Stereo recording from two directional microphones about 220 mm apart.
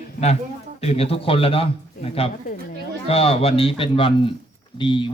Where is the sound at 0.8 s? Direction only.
25° left (ahead or behind).